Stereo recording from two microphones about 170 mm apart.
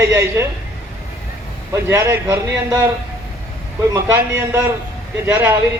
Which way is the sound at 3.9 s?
10° right (ahead or behind).